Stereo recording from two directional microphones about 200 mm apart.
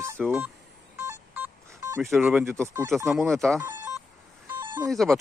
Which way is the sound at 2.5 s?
15° right (ahead or behind).